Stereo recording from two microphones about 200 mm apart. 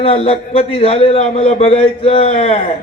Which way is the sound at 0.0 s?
30° left (ahead or behind).